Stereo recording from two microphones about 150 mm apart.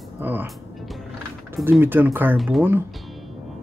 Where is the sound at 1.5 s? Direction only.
15° right (ahead or behind).